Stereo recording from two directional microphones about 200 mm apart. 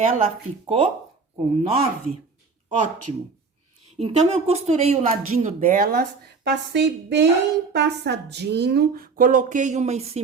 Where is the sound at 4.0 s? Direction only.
30° right (ahead or behind).